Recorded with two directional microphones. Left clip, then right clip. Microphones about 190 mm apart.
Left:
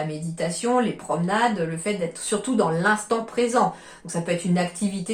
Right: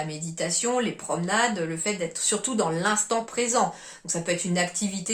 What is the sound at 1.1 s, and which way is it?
Speech, 30° right (ahead or behind).